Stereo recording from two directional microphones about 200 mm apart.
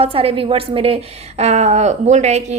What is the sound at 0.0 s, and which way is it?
A woman's voice, 30° right (ahead or behind).